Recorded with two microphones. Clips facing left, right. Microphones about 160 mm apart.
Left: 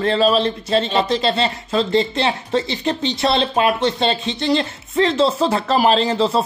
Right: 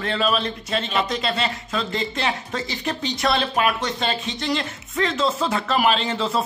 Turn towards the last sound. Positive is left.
turn(degrees=35)  # may be behind; listen again after turning